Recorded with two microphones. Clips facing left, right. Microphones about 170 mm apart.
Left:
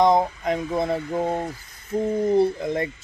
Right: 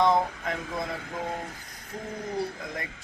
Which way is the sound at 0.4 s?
25° left (ahead or behind).